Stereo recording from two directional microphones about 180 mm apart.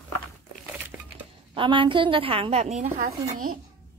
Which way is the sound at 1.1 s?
30° right (ahead or behind).